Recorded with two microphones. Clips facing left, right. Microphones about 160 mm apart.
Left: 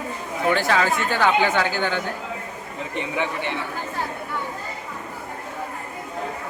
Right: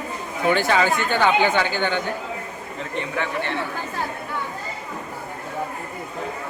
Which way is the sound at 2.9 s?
15° left (ahead or behind).